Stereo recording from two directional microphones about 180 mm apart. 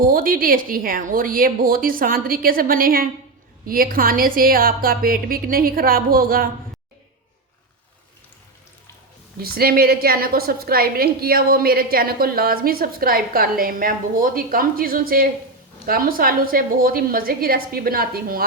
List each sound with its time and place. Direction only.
0.0 s a woman's voice: 50° right (ahead or behind)
9.4 s a woman's voice: 55° right (ahead or behind)